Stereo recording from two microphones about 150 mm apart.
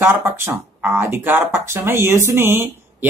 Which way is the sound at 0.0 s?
15° right (ahead or behind).